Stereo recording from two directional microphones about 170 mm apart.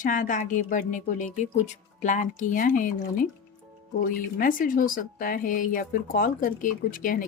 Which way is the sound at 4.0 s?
55° left (ahead or behind).